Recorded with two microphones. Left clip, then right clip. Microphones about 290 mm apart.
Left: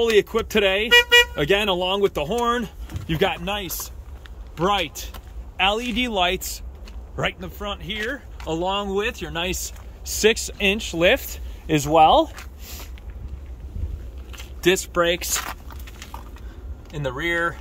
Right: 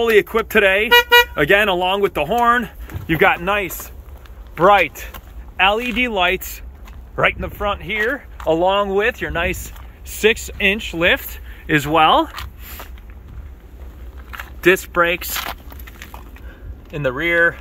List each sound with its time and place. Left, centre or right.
0.0 s speech: centre
4.6 s speech: right
4.9 s speech: centre
14.6 s speech: centre
17.0 s speech: centre